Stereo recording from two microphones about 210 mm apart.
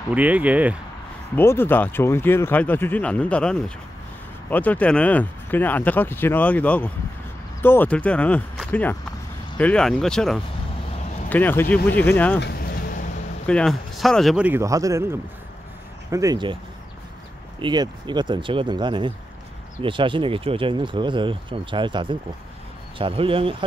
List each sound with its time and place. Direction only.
0.1 s speech: 5° right (ahead or behind)
1.3 s speech: 10° left (ahead or behind)
12.4 s vehicle: 50° left (ahead or behind)
13.5 s speech: 5° left (ahead or behind); by 16.5 s 20° right (ahead or behind)
17.6 s speech: 20° right (ahead or behind)